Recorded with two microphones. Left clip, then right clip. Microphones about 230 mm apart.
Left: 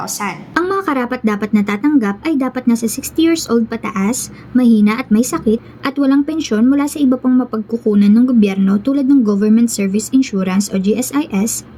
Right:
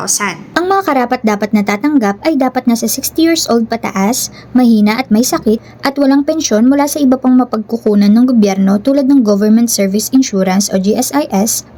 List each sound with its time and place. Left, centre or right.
0.2 s speech: centre